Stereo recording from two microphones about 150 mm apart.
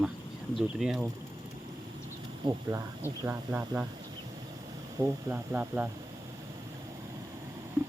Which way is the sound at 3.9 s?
30° right (ahead or behind).